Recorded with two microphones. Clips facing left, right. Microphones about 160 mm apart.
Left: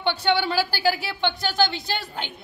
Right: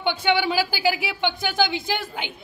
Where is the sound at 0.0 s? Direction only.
15° right (ahead or behind).